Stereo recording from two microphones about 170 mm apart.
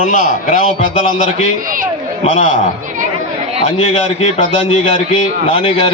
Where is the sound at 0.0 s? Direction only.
45° left (ahead or behind).